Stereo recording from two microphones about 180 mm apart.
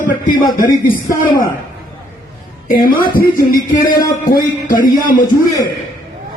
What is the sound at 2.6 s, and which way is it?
A woman's voice, 50° left (ahead or behind).